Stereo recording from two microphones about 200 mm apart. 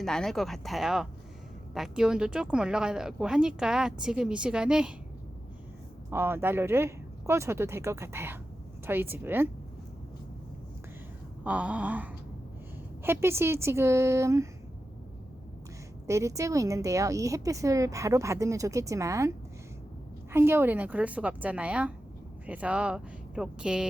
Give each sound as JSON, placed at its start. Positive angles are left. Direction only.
{"t": 0.0, "sound": "speech", "side_deg": 0}
{"t": 6.1, "sound": "speech", "side_deg": -10}
{"t": 11.4, "sound": "speech", "side_deg": -5}
{"t": 16.0, "sound": "speech", "side_deg": -15}
{"t": 20.3, "sound": "speech", "side_deg": -10}